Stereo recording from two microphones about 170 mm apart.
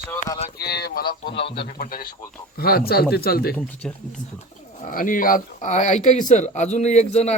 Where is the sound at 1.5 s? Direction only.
60° left (ahead or behind).